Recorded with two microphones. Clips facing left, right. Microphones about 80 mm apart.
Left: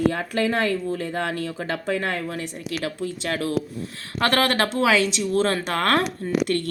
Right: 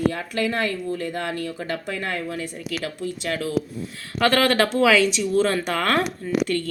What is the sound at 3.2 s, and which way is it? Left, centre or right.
Speech, left.